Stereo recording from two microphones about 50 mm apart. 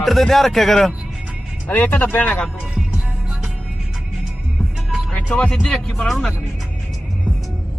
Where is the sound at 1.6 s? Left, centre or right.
Left.